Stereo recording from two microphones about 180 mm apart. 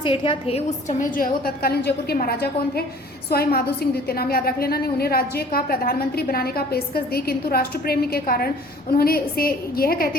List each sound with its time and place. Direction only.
0.0 s a woman's voice: 30° left (ahead or behind); by 10.2 s 55° left (ahead or behind)